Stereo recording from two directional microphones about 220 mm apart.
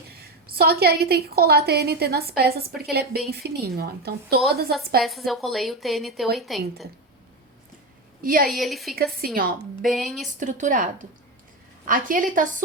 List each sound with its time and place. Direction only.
0.2 s a woman's voice: 45° right (ahead or behind)
5.0 s a woman's voice: centre (ahead or behind)
8.2 s a woman's voice: 40° right (ahead or behind)
8.4 s a woman's voice: centre (ahead or behind)
9.2 s a woman's voice: 40° right (ahead or behind)
9.8 s a woman's voice: centre (ahead or behind)
10.4 s a woman's voice: 35° right (ahead or behind)